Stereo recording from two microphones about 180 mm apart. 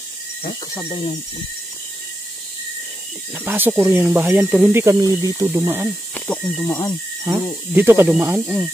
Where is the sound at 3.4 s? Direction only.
10° right (ahead or behind).